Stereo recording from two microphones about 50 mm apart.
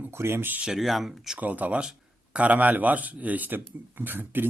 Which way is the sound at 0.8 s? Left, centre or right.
Centre.